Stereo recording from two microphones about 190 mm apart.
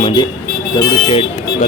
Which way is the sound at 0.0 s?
25° left (ahead or behind).